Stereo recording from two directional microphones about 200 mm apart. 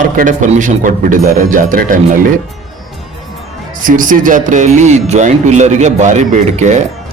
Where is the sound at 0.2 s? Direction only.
40° right (ahead or behind).